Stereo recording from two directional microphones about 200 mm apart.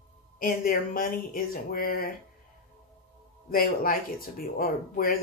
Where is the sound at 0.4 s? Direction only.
45° left (ahead or behind).